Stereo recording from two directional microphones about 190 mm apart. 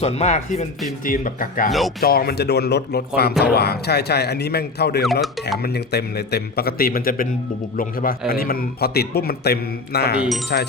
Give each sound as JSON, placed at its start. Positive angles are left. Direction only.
{"t": 0.0, "sound": "speech", "side_deg": 35}
{"t": 1.0, "sound": "speech", "side_deg": 45}